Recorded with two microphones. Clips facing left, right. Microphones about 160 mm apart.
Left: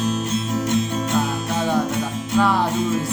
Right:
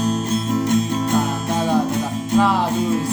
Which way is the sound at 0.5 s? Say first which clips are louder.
Right 3 dB; 40° right (ahead or behind).